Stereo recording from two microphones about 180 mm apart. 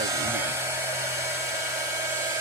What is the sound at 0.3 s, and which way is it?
Hair dryer, 15° right (ahead or behind).